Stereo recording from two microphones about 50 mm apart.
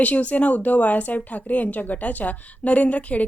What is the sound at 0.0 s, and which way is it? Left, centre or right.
A woman's voice, left.